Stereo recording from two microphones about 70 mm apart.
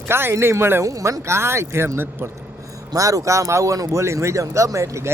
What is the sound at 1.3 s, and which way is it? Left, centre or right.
Speech, right.